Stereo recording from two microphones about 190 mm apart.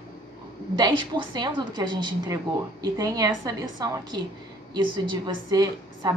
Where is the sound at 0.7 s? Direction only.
25° right (ahead or behind).